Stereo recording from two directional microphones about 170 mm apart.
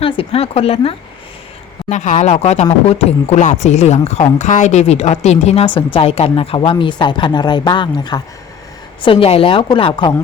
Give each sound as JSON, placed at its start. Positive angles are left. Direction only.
{"t": 0.0, "sound": "speech", "side_deg": 35}